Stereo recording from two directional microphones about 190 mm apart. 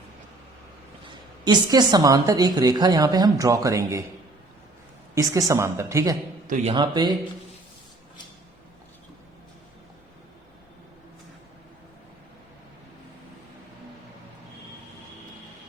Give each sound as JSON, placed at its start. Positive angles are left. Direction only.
{"t": 1.0, "sound": "a woman's voice", "side_deg": -20}
{"t": 5.1, "sound": "a woman's voice", "side_deg": -15}
{"t": 6.5, "sound": "a man's voice", "side_deg": -35}
{"t": 6.7, "sound": "a woman's voice", "side_deg": -20}